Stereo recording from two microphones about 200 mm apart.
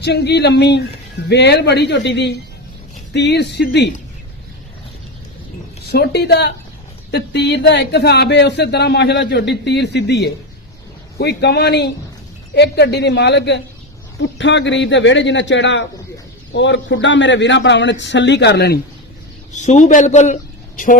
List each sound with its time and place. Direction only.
0.0 s speech: 55° left (ahead or behind)
5.9 s speech: 55° left (ahead or behind)
19.5 s a woman's voice: 35° left (ahead or behind)